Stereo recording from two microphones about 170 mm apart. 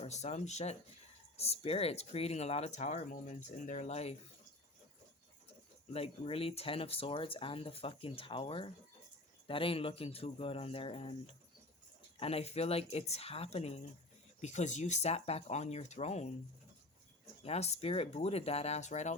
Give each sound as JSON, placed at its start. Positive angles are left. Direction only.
{"t": 0.0, "sound": "speech", "side_deg": 40}
{"t": 5.9, "sound": "speech", "side_deg": 35}
{"t": 12.2, "sound": "speech", "side_deg": 35}
{"t": 17.4, "sound": "speech", "side_deg": 40}